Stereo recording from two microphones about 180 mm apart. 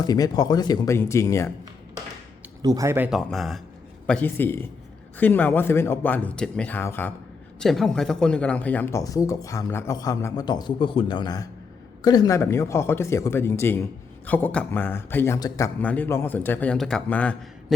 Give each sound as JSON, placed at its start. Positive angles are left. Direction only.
{"t": 0.0, "sound": "speech", "side_deg": 20}
{"t": 2.6, "sound": "speech", "side_deg": -20}
{"t": 3.1, "sound": "speech", "side_deg": 0}